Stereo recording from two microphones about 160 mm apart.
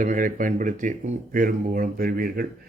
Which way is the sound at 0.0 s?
55° right (ahead or behind).